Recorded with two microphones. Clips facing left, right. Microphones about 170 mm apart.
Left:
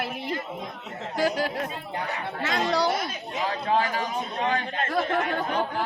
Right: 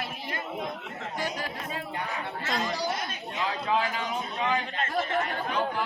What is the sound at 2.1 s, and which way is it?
Speech, 70° left (ahead or behind).